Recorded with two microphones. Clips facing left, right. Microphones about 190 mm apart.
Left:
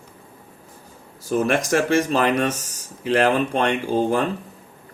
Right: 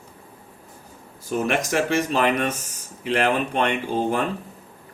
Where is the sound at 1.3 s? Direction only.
45° left (ahead or behind).